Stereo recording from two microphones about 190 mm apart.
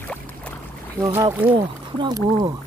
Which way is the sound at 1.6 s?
25° right (ahead or behind).